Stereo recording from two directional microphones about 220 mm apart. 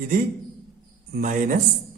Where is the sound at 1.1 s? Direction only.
40° right (ahead or behind).